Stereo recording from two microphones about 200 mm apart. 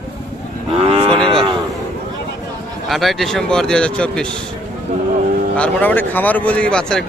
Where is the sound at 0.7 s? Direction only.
30° right (ahead or behind).